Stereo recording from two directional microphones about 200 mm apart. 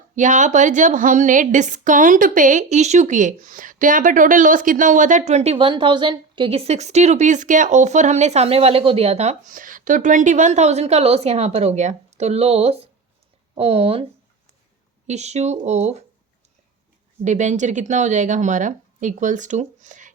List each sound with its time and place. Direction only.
0.2 s a woman's voice: 40° right (ahead or behind)
15.0 s a woman's voice: 35° right (ahead or behind)
17.2 s a woman's voice: 35° right (ahead or behind)